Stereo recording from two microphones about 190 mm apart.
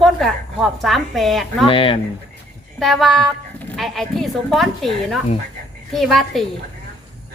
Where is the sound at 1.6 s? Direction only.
30° left (ahead or behind).